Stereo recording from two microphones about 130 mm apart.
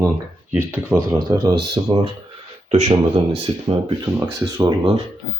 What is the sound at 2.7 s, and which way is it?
Speech, 55° right (ahead or behind).